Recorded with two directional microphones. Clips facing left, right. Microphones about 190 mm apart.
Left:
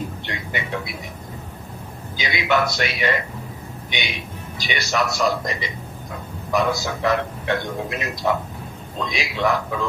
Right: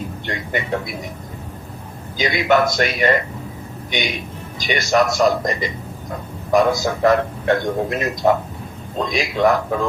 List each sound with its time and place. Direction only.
0.3 s a man's voice: 45° right (ahead or behind)
2.1 s a man's voice: 45° right (ahead or behind)
4.6 s a man's voice: 45° right (ahead or behind)